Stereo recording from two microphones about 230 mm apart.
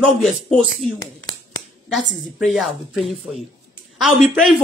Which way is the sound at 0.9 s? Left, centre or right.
Centre.